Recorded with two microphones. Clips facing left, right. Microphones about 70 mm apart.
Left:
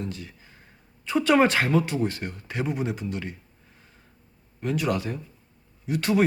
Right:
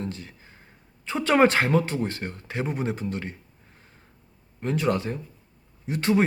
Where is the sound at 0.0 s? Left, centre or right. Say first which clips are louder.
Right 1 dB; right.